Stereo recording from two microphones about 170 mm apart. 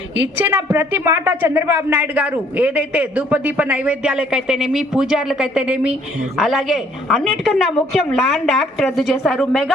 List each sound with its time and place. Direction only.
0.2 s a woman's voice: 10° right (ahead or behind)